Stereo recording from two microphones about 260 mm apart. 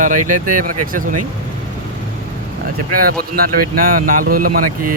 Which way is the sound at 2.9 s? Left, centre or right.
Right.